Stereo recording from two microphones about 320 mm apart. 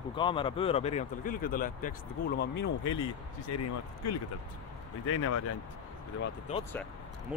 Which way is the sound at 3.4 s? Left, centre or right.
Left.